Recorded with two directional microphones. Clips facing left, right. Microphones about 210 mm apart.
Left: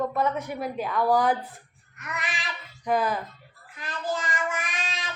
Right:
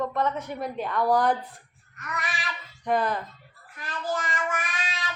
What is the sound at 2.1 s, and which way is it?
Child singing, 20° left (ahead or behind).